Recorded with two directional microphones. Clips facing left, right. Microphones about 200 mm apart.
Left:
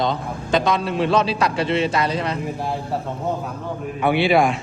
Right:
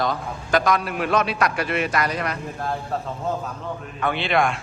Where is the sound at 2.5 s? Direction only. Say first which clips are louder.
Left 2 dB; 10° left (ahead or behind).